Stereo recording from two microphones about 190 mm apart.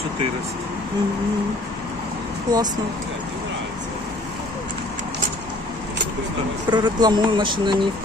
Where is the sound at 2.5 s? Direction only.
20° right (ahead or behind).